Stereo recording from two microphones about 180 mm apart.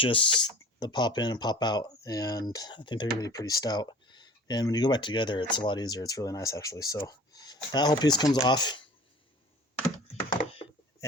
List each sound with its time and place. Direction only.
0.0 s speech: 30° left (ahead or behind)